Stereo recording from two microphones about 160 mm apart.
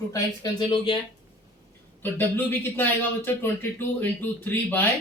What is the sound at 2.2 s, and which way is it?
Speech, 10° left (ahead or behind).